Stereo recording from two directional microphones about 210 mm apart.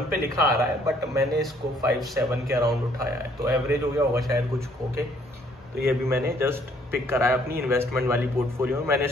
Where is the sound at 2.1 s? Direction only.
15° right (ahead or behind).